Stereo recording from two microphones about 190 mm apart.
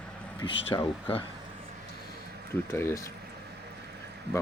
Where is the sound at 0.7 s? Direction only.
30° left (ahead or behind).